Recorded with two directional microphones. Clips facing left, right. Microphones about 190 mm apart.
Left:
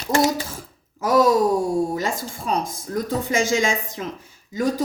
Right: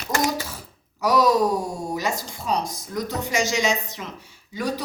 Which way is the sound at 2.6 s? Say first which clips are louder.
Left 2 dB; 50° left (ahead or behind).